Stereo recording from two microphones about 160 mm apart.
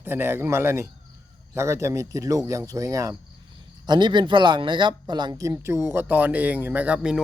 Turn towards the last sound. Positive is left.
turn(degrees=-5)  # may be behind; listen again after turning